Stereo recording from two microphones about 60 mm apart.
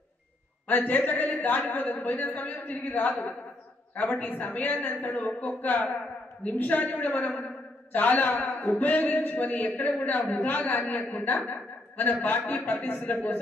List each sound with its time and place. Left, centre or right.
0.7 s a man's voice: left